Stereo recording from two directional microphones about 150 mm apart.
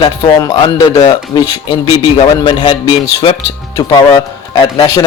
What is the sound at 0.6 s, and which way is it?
Speech, 30° left (ahead or behind).